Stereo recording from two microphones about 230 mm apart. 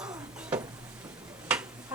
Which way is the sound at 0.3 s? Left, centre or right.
Centre.